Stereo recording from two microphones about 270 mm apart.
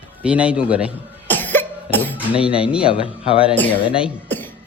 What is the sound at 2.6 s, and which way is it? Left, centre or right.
Speech, centre.